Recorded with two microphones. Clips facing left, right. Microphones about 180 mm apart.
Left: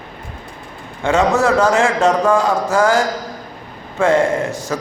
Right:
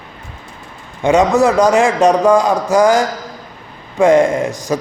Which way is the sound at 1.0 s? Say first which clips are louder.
Right 4 dB; 15° right (ahead or behind).